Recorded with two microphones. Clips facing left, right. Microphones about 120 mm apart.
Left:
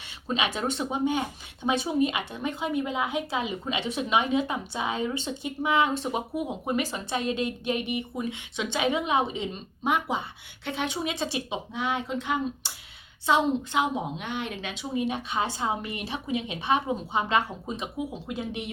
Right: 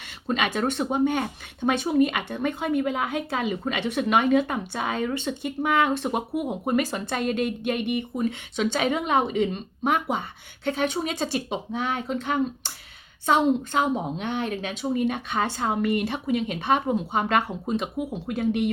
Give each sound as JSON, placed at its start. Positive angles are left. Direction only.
{"t": 0.3, "sound": "speech", "side_deg": -55}